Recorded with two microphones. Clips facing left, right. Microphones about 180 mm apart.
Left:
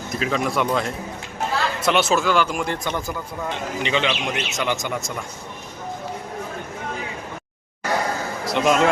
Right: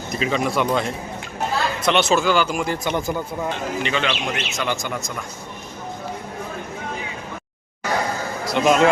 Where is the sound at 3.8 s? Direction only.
20° left (ahead or behind).